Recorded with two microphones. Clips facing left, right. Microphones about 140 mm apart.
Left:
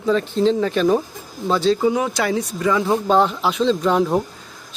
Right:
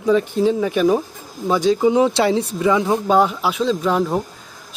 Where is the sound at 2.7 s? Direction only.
10° right (ahead or behind).